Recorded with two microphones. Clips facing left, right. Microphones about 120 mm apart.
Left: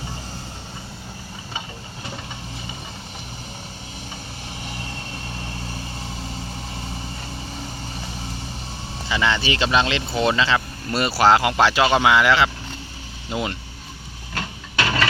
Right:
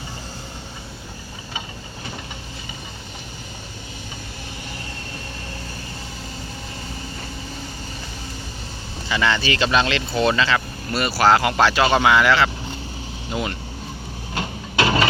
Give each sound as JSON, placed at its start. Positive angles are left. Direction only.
{"t": 9.0, "sound": "speech", "side_deg": 15}
{"t": 14.3, "sound": "printer", "side_deg": -20}